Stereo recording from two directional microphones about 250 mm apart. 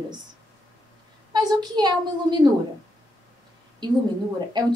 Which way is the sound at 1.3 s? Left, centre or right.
Centre.